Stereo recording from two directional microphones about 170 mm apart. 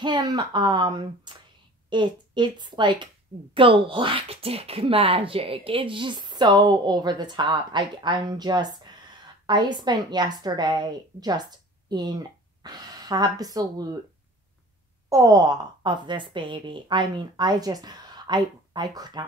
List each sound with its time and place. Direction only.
0.0 s a woman's voice: 25° right (ahead or behind)
15.0 s speech: 20° right (ahead or behind)